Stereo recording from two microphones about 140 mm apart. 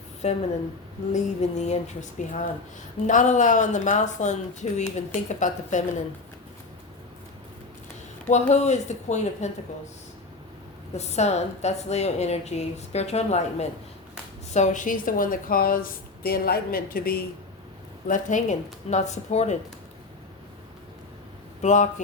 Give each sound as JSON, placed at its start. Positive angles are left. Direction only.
{"t": 0.2, "sound": "a woman's voice", "side_deg": 50}
{"t": 3.1, "sound": "speech", "side_deg": 65}
{"t": 8.3, "sound": "speech", "side_deg": 55}
{"t": 10.9, "sound": "a woman's voice", "side_deg": 50}
{"t": 18.1, "sound": "speech", "side_deg": 65}
{"t": 21.6, "sound": "speech", "side_deg": 60}